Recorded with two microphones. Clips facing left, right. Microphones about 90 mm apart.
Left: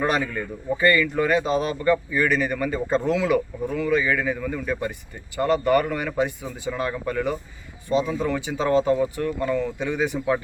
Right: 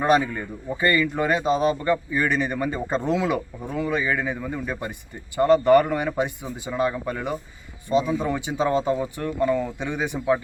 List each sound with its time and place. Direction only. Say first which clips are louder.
0.0 s speech: right 3 dB; 20° right (ahead or behind)